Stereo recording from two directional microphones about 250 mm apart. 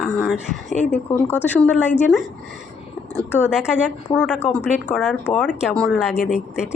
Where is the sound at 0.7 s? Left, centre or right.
Left.